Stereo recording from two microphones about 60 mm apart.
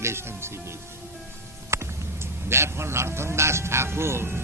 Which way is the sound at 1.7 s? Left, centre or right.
Right.